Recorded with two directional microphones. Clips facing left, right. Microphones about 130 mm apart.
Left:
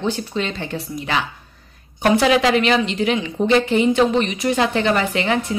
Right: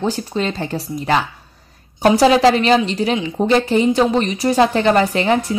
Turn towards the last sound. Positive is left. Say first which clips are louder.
# right 3 dB
turn(degrees=-35)  # may be behind; listen again after turning